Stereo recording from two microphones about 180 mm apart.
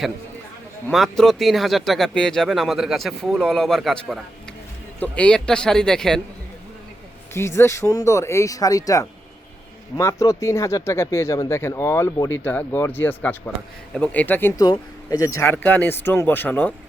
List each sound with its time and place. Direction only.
0.9 s speech: centre (ahead or behind)
7.3 s speech: 15° left (ahead or behind)
14.6 s speech: 20° left (ahead or behind)